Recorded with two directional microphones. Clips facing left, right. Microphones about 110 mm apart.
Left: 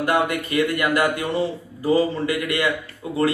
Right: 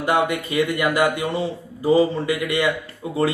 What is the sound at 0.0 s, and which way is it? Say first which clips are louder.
Speech: right 1 dB; 20° right (ahead or behind).